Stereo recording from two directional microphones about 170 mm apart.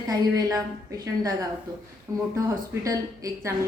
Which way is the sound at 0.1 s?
20° right (ahead or behind).